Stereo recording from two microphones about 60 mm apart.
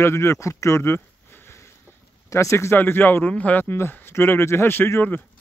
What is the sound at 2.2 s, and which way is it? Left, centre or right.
Speech, left.